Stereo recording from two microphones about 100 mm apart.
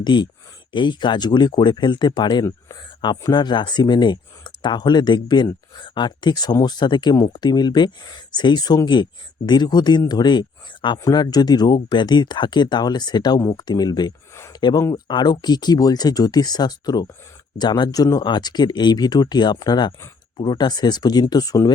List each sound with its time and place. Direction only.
0.0 s speech: 50° left (ahead or behind)